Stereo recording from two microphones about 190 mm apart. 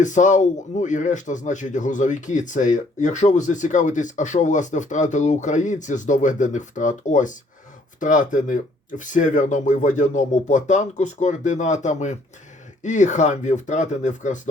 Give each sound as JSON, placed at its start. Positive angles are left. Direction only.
{"t": 0.0, "sound": "speech", "side_deg": 40}